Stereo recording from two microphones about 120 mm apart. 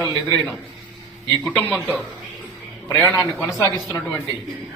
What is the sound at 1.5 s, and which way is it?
Speech, 15° left (ahead or behind).